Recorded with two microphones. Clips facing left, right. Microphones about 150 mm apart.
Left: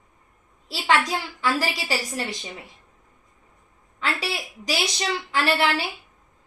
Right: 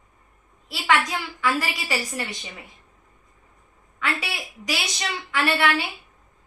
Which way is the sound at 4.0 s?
30° left (ahead or behind).